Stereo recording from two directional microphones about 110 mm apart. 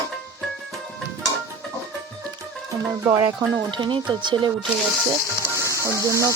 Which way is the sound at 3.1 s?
25° right (ahead or behind).